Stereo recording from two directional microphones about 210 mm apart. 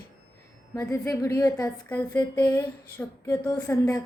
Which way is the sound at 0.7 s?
15° left (ahead or behind).